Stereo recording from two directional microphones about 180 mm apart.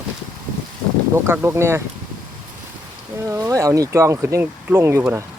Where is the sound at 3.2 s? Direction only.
15° right (ahead or behind).